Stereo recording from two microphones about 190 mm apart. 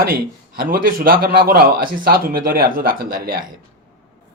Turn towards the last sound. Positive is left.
turn(degrees=-50)  # may be behind; listen again after turning